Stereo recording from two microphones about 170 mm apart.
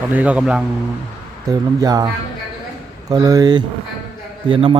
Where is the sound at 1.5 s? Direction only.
20° right (ahead or behind).